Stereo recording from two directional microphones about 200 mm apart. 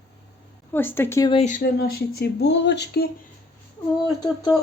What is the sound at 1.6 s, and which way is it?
Speech, 50° left (ahead or behind).